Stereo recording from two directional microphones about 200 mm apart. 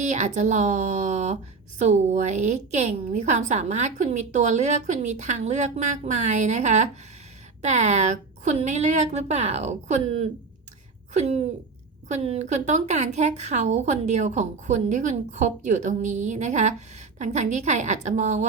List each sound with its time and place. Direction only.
0.0 s a woman's voice: 35° right (ahead or behind)